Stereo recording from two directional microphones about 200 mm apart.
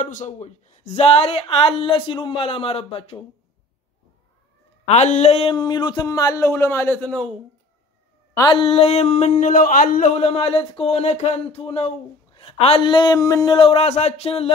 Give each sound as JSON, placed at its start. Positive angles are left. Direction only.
{"t": 0.0, "sound": "speech", "side_deg": 40}
{"t": 4.8, "sound": "speech", "side_deg": 35}
{"t": 8.4, "sound": "a sound", "side_deg": 25}
{"t": 12.4, "sound": "speech", "side_deg": 30}